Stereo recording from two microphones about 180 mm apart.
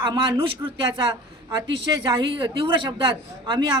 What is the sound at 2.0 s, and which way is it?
A man's voice, 25° right (ahead or behind).